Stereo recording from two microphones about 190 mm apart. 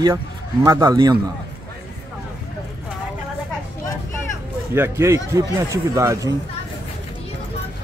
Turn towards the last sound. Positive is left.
turn(degrees=-15)  # may be behind; listen again after turning